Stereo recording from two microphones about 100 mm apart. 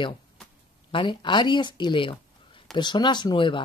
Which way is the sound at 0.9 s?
55° left (ahead or behind).